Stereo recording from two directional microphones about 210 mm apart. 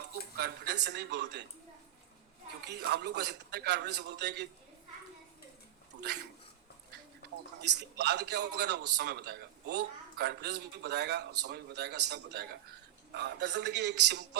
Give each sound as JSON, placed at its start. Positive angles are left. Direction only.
{"t": 0.3, "sound": "speech", "side_deg": -50}
{"t": 2.6, "sound": "a man's voice", "side_deg": -55}
{"t": 6.0, "sound": "speech", "side_deg": -55}
{"t": 7.6, "sound": "a man's voice", "side_deg": -55}